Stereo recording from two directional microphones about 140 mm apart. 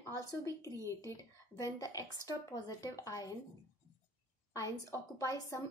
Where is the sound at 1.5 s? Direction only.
25° left (ahead or behind).